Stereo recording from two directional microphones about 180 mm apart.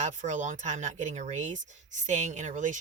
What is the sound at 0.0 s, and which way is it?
Speech, 45° right (ahead or behind).